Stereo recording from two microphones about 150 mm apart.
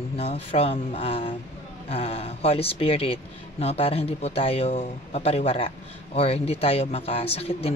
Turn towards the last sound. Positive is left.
turn(degrees=40)  # may be behind; listen again after turning